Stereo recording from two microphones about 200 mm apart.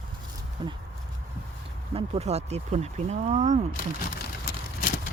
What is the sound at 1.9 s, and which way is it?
Speech, 30° right (ahead or behind).